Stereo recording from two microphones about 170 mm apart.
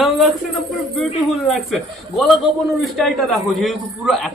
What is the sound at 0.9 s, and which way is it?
Speech, centre (ahead or behind).